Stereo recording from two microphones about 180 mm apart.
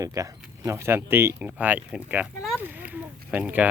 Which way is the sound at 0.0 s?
20° right (ahead or behind).